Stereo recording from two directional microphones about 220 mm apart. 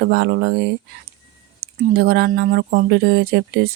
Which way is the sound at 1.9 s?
45° right (ahead or behind).